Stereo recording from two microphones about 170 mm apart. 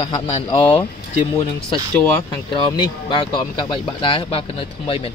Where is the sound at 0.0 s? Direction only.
30° left (ahead or behind).